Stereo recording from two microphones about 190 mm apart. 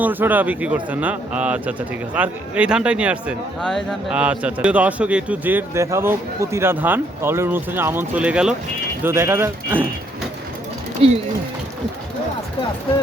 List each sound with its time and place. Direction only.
0.0 s speech: 10° right (ahead or behind)
11.0 s speech: 30° right (ahead or behind)